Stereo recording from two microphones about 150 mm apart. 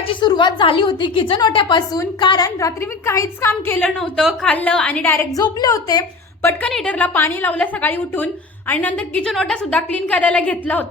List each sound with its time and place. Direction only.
0.1 s a woman's voice: 30° left (ahead or behind)
4.2 s a woman's voice: 5° left (ahead or behind)
5.4 s a woman's voice: 25° left (ahead or behind)
6.7 s a woman's voice: 5° left (ahead or behind)